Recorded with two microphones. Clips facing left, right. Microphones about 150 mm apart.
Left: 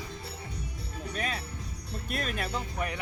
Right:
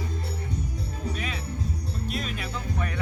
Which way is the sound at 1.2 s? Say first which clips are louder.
Right 2 dB; 45° left (ahead or behind).